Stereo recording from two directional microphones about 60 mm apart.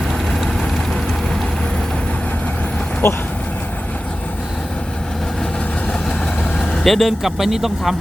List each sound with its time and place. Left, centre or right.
0.3 s vehicle: centre
3.0 s speech: left
6.8 s speech: centre